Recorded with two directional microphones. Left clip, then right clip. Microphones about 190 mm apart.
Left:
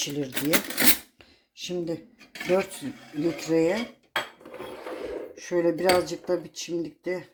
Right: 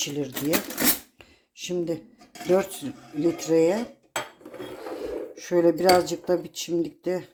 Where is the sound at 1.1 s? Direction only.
5° right (ahead or behind).